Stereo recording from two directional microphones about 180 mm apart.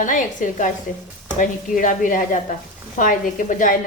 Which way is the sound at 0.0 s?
45° left (ahead or behind).